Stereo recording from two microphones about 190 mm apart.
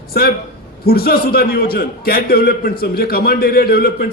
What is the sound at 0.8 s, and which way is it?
A man's voice, 55° left (ahead or behind).